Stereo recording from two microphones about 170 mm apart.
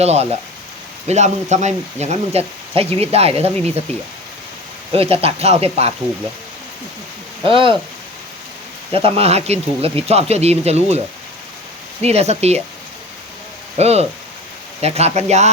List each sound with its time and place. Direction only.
0.0 s speech: 40° right (ahead or behind)
4.9 s speech: 35° right (ahead or behind)
7.4 s speech: 30° right (ahead or behind)
8.9 s speech: 35° right (ahead or behind)
12.0 s speech: 40° right (ahead or behind)
13.7 s speech: 40° right (ahead or behind)